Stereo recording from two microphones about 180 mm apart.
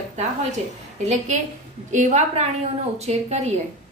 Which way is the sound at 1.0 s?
40° right (ahead or behind).